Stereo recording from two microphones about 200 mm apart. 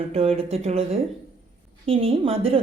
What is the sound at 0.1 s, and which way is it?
Speech, 30° right (ahead or behind).